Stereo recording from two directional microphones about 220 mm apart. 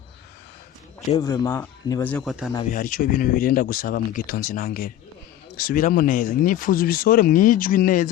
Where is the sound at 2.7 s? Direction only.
40° left (ahead or behind).